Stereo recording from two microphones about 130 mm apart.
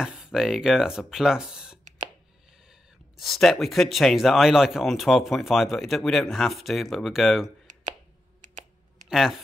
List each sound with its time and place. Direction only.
0.0 s speech: 5° right (ahead or behind)
7.7 s a sound: 75° right (ahead or behind)
9.1 s speech: centre (ahead or behind)